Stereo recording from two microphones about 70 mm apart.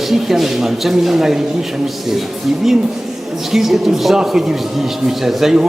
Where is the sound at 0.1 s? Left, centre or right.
Centre.